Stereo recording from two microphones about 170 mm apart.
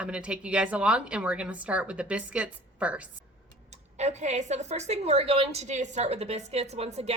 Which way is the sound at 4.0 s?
40° right (ahead or behind).